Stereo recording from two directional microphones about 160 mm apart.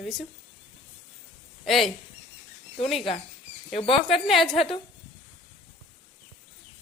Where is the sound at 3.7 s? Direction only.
35° left (ahead or behind).